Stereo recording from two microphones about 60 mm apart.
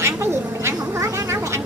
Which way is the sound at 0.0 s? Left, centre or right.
Right.